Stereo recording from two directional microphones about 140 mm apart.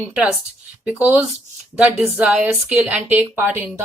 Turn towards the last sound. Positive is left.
turn(degrees=-15)  # may be behind; listen again after turning